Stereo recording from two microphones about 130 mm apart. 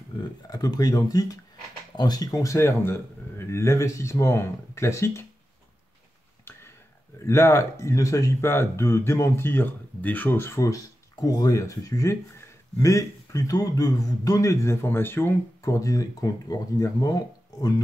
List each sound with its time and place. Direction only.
0.1 s speech: 30° left (ahead or behind)
7.2 s speech: 20° left (ahead or behind)